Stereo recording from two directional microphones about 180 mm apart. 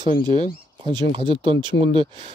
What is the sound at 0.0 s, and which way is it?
Speech, 25° right (ahead or behind).